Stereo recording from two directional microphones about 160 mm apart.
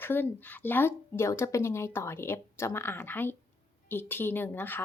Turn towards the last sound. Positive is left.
turn(degrees=10)  # may be behind; listen again after turning